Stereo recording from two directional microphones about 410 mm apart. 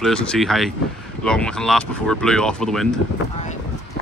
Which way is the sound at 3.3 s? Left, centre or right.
Centre.